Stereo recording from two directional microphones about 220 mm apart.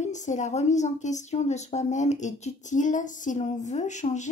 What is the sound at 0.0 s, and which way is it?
Speech, 35° left (ahead or behind).